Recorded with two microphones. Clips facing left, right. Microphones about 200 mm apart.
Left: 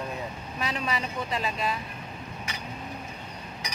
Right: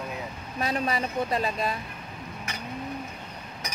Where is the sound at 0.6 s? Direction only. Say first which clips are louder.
Right 3 dB; 50° right (ahead or behind).